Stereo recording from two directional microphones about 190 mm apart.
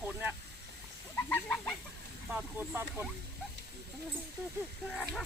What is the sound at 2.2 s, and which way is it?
Speech, 10° right (ahead or behind).